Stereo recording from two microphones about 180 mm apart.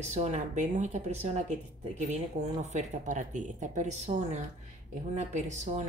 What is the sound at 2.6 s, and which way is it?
Speech, 40° right (ahead or behind).